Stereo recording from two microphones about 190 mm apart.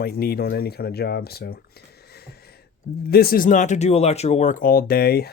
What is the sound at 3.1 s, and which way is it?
Speech, 55° left (ahead or behind).